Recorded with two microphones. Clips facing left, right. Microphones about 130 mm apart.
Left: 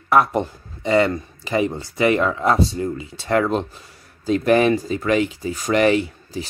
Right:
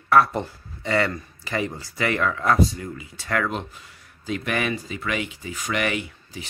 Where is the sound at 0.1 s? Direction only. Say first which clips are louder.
Left 2 dB; 15° left (ahead or behind).